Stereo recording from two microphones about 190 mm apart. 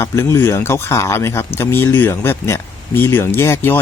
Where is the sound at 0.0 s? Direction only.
15° left (ahead or behind).